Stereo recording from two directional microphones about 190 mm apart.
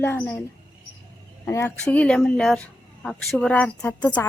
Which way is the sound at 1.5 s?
10° left (ahead or behind).